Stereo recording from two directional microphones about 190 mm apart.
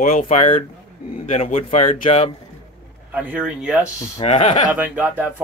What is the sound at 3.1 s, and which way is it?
Speech, 10° right (ahead or behind).